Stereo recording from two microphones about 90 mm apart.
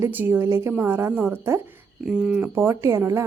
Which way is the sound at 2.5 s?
30° right (ahead or behind).